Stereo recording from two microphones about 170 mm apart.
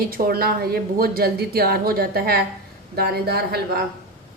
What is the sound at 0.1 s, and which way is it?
A woman's voice, 65° right (ahead or behind).